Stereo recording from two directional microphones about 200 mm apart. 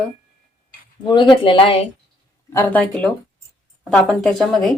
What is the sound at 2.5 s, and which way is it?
Speech, 10° left (ahead or behind).